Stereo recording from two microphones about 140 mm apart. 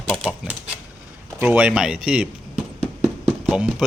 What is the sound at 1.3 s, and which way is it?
Speech, 10° right (ahead or behind).